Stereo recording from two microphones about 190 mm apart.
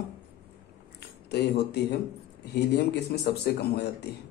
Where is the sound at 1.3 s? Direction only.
60° left (ahead or behind).